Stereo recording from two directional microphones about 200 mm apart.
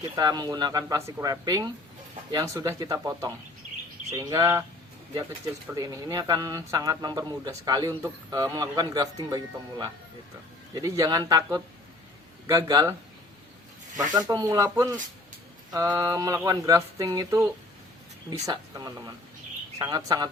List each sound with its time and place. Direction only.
0.0 s speech: 20° right (ahead or behind)
5.7 s speech: 15° right (ahead or behind)
14.1 s speech: 20° right (ahead or behind)